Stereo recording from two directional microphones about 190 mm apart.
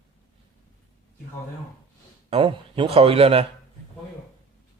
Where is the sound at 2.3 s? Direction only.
25° right (ahead or behind).